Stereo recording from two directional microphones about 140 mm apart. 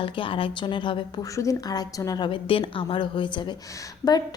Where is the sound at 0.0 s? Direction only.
40° left (ahead or behind).